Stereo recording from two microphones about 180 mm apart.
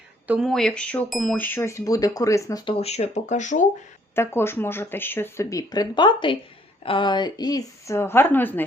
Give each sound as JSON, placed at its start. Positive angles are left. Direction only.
{"t": 0.3, "sound": "speech", "side_deg": 0}
{"t": 2.7, "sound": "speech", "side_deg": 35}
{"t": 4.1, "sound": "a woman's voice", "side_deg": 15}